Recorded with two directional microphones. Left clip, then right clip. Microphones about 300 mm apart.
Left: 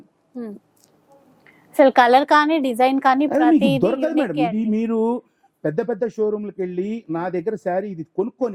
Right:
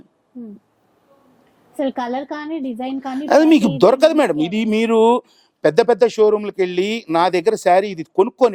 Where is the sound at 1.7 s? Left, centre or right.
Centre.